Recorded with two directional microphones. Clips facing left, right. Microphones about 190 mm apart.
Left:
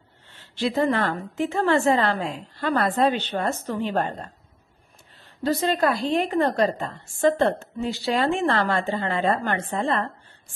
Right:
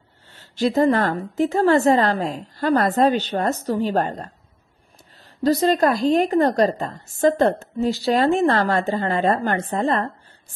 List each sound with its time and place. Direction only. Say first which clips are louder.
0.3 s a woman's voice: right 5 dB; 40° right (ahead or behind)
5.4 s a woman's voice: right 5 dB; 40° right (ahead or behind)